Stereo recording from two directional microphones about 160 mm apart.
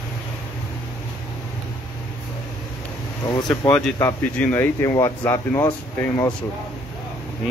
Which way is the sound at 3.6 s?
5° left (ahead or behind).